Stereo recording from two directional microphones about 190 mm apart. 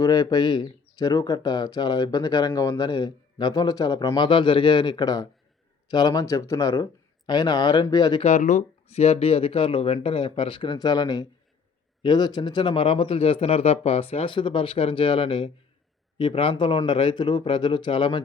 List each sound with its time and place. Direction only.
0.0 s speech: 20° left (ahead or behind)
8.2 s speech: 40° left (ahead or behind)